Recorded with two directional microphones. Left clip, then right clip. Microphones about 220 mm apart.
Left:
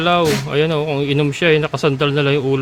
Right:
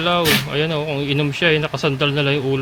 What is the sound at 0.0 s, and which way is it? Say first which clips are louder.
Speech: left 2 dB; 25° left (ahead or behind).